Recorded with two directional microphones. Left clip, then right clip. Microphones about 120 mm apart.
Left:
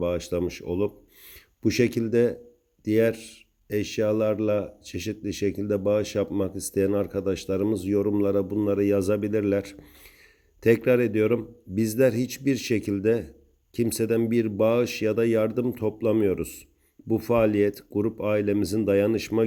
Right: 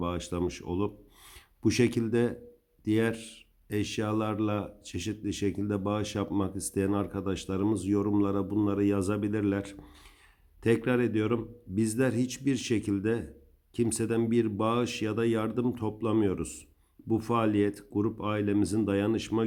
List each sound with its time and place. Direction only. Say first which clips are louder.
0.0 s speech: left 6 dB; 15° left (ahead or behind)